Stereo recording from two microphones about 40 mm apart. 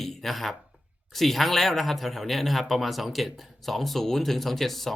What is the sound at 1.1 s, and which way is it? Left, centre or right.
Speech, centre.